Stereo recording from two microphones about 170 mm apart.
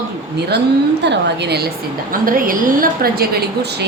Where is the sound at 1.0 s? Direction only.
85° right.